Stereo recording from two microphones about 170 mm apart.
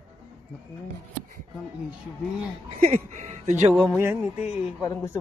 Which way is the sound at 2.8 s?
45° right (ahead or behind).